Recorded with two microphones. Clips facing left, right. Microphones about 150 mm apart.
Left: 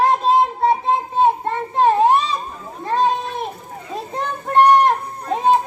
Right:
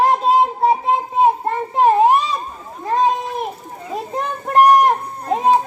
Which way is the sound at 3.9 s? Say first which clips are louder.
Right 2 dB; 5° right (ahead or behind).